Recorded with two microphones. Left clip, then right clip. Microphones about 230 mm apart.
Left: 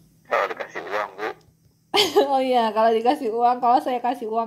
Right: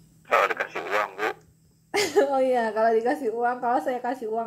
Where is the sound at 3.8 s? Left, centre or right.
Left.